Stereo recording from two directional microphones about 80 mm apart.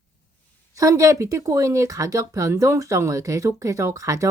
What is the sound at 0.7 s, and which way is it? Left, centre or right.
Speech, right.